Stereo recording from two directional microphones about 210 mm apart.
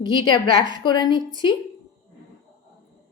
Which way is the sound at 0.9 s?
20° left (ahead or behind).